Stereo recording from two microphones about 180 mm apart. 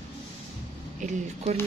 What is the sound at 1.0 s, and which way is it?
Speech, 40° right (ahead or behind).